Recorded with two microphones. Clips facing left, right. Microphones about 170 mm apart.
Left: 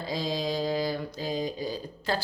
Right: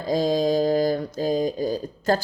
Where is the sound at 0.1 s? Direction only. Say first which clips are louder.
Right 10 dB; 45° right (ahead or behind).